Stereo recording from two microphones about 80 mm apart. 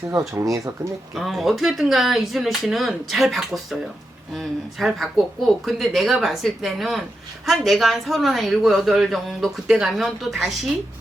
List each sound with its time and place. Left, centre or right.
0.1 s speech: right
1.1 s speech: centre